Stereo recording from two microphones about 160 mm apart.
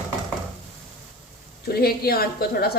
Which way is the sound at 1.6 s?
75° left (ahead or behind).